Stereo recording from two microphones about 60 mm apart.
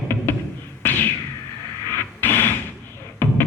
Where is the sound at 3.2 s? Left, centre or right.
Left.